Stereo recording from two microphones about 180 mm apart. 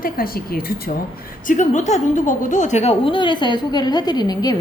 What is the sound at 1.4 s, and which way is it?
A woman's voice, 45° left (ahead or behind).